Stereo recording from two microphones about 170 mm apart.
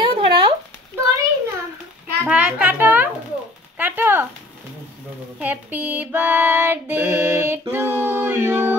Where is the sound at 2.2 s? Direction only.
10° right (ahead or behind).